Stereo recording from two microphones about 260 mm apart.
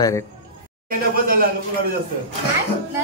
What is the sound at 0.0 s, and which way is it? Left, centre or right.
Speech, centre.